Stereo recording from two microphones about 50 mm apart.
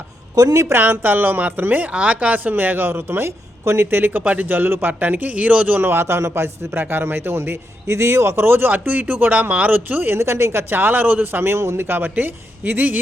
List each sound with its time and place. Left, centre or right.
0.3 s a woman's voice: right
0.8 s a man's voice: right
3.6 s speech: right
4.2 s speech: right
4.4 s a man's voice: right
10.2 s speech: right
10.8 s a man's voice: right
11.5 s a man's voice: right